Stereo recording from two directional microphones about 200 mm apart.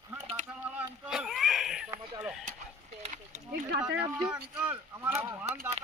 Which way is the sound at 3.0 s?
35° right (ahead or behind).